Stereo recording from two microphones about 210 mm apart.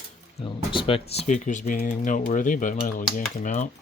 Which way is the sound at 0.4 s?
25° left (ahead or behind).